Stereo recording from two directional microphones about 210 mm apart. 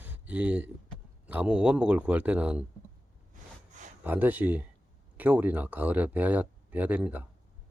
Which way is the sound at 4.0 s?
10° right (ahead or behind).